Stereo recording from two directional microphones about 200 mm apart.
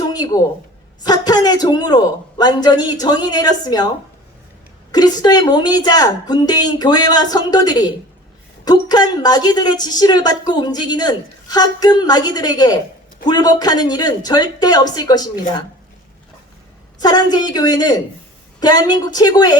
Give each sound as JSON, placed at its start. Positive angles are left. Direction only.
{"t": 0.0, "sound": "a sound", "side_deg": 20}
{"t": 1.0, "sound": "a woman's voice", "side_deg": 20}
{"t": 4.9, "sound": "a woman's voice", "side_deg": 20}
{"t": 17.0, "sound": "a woman's voice", "side_deg": 20}